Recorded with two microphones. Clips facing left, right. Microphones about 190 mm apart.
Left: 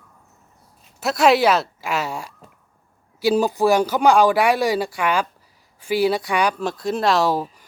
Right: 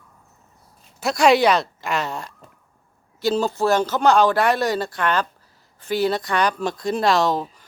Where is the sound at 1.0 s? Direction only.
Centre (ahead or behind).